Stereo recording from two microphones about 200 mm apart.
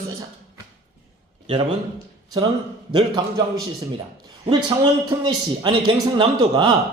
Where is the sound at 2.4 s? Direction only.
20° right (ahead or behind).